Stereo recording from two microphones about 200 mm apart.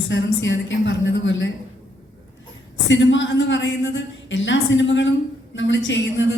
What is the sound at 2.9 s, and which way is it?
A woman's voice, 65° left (ahead or behind).